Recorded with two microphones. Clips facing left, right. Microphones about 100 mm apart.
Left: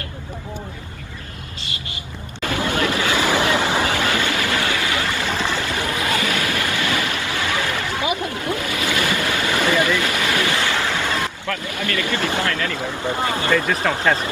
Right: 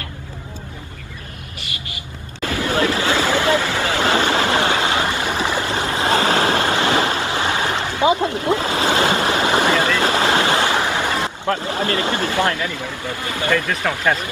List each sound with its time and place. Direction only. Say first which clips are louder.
2.7 s hubbub: right 4 dB; 30° right (ahead or behind)
3.3 s vehicle: right 1 dB; 20° left (ahead or behind)
3.8 s a sound: right 3 dB; 25° right (ahead or behind)
5.7 s waves: right 3 dB; 30° right (ahead or behind)
12.4 s speech: right 2 dB; 20° right (ahead or behind)
13.0 s speech: left 3 dB; 30° left (ahead or behind)
13.9 s speech: left 1 dB; centre (ahead or behind)